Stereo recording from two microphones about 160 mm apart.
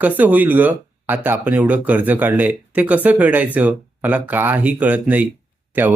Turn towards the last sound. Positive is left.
turn(degrees=-10)  # may be behind; listen again after turning